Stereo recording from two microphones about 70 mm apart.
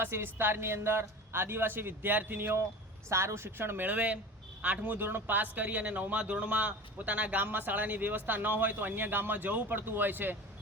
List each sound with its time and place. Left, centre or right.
0.0 s a man's voice: right
3.1 s a man's voice: right